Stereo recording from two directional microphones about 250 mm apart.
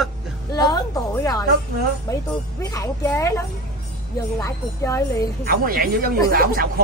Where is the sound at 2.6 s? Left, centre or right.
Centre.